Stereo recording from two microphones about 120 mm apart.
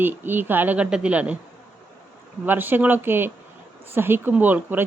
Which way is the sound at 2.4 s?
15° right (ahead or behind).